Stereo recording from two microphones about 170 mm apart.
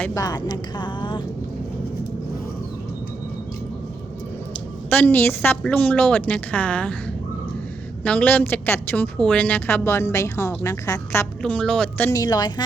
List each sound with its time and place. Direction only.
0.0 s speech: 20° left (ahead or behind)
4.9 s a woman's voice: 10° left (ahead or behind)
8.0 s a woman's voice: 10° left (ahead or behind)
12.2 s speech: 25° left (ahead or behind)